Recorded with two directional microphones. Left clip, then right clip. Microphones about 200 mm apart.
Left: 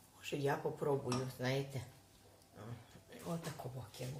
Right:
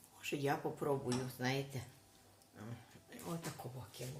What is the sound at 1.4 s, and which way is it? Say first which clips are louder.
Speech: even; 30° right (ahead or behind).